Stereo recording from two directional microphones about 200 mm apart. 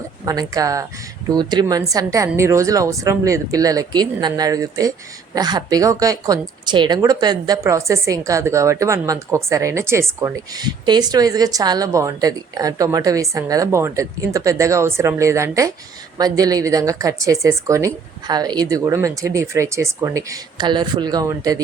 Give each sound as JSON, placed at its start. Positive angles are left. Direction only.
{"t": 0.3, "sound": "a woman's voice", "side_deg": -15}